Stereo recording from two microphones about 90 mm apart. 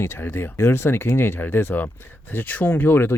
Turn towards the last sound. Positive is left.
turn(degrees=20)  # may be behind; listen again after turning